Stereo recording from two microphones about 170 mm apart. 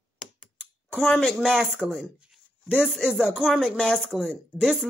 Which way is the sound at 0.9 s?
5° left (ahead or behind).